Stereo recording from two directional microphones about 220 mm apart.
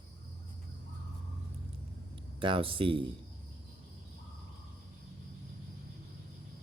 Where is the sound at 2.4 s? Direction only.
25° right (ahead or behind).